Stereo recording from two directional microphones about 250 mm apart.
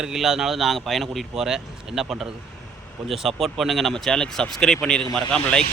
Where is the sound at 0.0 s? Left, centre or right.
Centre.